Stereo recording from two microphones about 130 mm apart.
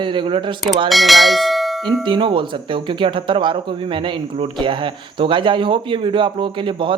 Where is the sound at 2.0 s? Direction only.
40° right (ahead or behind).